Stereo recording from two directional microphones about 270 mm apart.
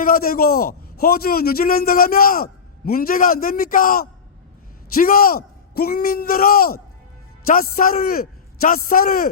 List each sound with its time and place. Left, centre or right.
0.0 s a man's voice: left